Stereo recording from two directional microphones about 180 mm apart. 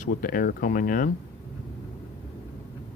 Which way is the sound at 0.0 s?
50° left (ahead or behind).